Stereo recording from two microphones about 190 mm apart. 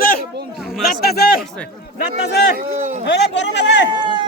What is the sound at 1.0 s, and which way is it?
Speech, 55° left (ahead or behind).